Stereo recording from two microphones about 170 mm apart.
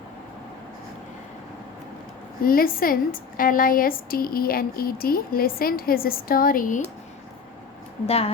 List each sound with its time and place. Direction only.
2.4 s a woman's voice: 60° left (ahead or behind)
8.0 s a woman's voice: 35° left (ahead or behind)